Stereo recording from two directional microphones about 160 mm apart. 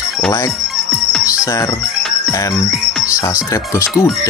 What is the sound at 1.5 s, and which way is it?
Speech, 20° left (ahead or behind).